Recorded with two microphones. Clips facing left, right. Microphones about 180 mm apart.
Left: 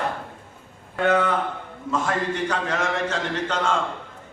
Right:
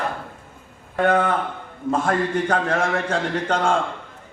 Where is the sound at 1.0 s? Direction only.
50° right (ahead or behind).